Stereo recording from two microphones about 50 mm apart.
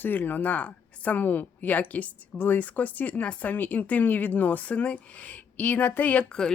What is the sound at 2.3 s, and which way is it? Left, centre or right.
Speech, left.